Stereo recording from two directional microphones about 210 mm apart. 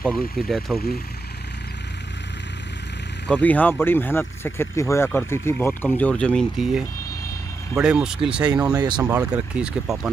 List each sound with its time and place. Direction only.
0.0 s speech: 5° left (ahead or behind)
3.3 s speech: 5° left (ahead or behind)
7.8 s speech: 5° right (ahead or behind)
8.7 s speech: 20° right (ahead or behind)
9.0 s speech: 10° right (ahead or behind)